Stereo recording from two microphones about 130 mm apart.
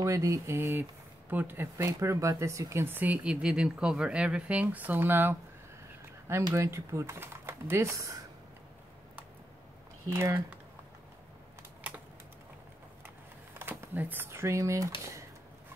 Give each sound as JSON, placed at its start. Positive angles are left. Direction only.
{"t": 0.0, "sound": "speech", "side_deg": -25}
{"t": 10.0, "sound": "speech", "side_deg": -20}
{"t": 13.6, "sound": "speech", "side_deg": -15}